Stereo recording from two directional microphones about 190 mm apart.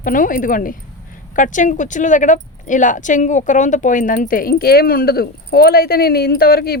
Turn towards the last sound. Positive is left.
turn(degrees=55)  # may be behind; listen again after turning